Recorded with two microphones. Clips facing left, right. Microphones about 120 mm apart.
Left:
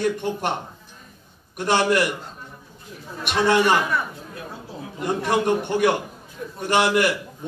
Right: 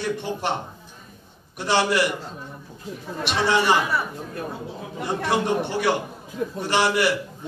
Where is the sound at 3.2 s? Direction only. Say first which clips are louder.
Left 3 dB; 50° left (ahead or behind).